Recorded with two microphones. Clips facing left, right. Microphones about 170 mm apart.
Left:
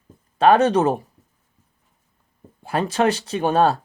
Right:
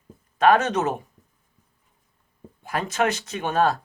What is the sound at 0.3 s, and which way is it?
Speech, 30° left (ahead or behind).